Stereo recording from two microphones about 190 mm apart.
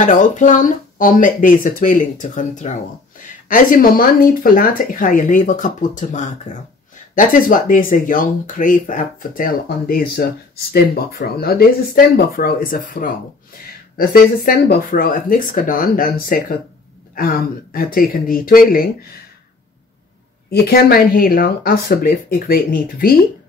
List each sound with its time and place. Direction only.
0.0 s speech: 40° left (ahead or behind)
20.4 s speech: 55° left (ahead or behind)